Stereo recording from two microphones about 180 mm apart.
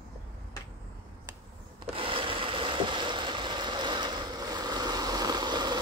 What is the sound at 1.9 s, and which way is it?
Boat, 30° right (ahead or behind).